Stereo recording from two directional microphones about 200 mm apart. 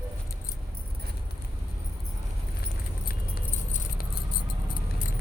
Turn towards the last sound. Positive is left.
turn(degrees=45)  # may be behind; listen again after turning